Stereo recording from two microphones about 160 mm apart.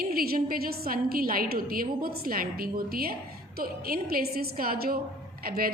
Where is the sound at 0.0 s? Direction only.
70° right (ahead or behind).